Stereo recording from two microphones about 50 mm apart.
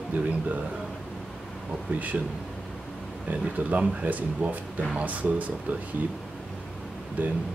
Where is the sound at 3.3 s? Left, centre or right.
Right.